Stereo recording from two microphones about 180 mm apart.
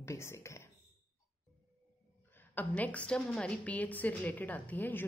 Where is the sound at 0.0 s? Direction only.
15° left (ahead or behind).